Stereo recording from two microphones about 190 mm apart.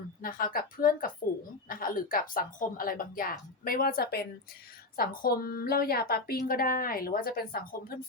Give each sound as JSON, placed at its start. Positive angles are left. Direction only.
{"t": 0.2, "sound": "a woman's voice", "side_deg": 50}